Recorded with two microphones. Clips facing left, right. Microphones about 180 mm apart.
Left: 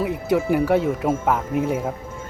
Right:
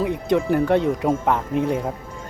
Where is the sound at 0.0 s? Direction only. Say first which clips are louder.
Right 1 dB; 5° left (ahead or behind).